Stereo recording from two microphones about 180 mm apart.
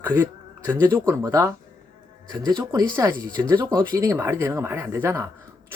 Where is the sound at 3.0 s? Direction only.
20° right (ahead or behind).